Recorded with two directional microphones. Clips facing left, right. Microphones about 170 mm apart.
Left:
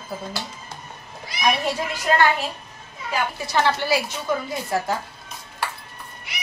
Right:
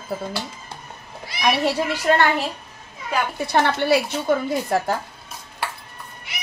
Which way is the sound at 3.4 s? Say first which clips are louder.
Right 2 dB; 60° right (ahead or behind).